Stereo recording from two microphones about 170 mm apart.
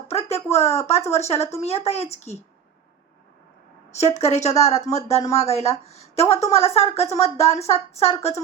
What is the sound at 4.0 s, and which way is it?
A woman's voice, 40° left (ahead or behind).